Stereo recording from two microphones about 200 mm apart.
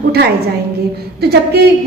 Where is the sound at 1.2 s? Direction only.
55° right (ahead or behind).